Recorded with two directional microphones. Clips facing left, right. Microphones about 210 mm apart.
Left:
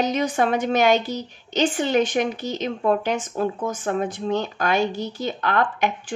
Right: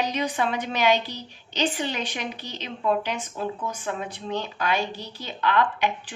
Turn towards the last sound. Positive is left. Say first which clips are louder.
# left 3 dB
turn(degrees=45)  # may be behind; listen again after turning